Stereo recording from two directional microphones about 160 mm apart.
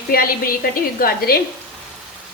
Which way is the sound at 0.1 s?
65° left (ahead or behind).